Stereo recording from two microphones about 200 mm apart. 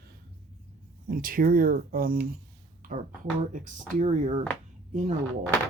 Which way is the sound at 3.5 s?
40° right (ahead or behind).